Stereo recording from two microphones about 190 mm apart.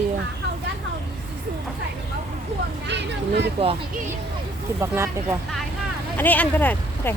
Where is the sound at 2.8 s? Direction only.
65° right (ahead or behind).